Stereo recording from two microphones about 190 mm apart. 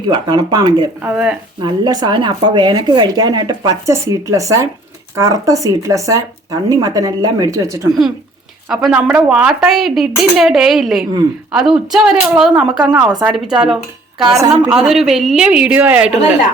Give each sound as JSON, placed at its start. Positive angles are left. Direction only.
{"t": 0.1, "sound": "speech", "side_deg": -20}
{"t": 1.1, "sound": "speech", "side_deg": -5}
{"t": 1.6, "sound": "speech", "side_deg": -20}
{"t": 8.7, "sound": "speech", "side_deg": -5}